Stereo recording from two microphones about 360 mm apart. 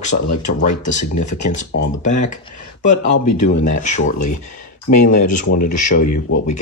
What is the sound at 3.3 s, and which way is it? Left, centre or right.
Speech, left.